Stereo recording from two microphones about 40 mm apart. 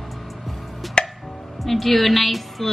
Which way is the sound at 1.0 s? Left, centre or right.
Left.